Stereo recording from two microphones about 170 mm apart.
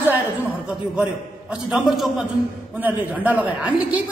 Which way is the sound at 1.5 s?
Centre (ahead or behind).